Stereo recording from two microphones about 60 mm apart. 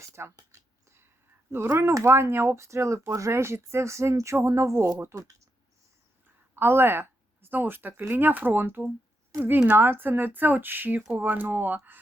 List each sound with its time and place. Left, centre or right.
0.0 s a sound: right
1.5 s speech: right
5.0 s speech: right
6.2 s speech: right